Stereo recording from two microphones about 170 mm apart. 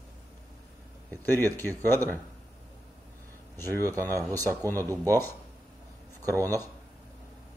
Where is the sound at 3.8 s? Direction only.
20° right (ahead or behind).